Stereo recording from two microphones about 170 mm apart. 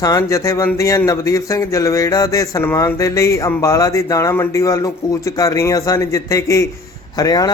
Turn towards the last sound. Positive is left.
turn(degrees=20)  # may be behind; listen again after turning